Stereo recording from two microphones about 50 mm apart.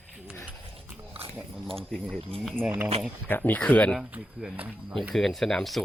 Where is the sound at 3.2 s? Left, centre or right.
Left.